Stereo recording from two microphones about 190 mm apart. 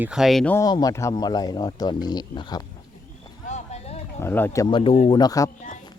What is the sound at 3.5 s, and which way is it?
Clip-clop, 35° left (ahead or behind).